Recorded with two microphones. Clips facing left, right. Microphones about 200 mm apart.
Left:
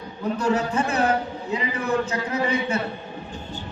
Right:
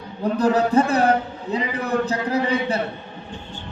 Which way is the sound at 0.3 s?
35° right (ahead or behind).